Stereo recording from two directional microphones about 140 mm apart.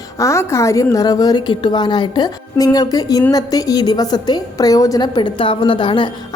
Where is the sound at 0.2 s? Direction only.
20° left (ahead or behind).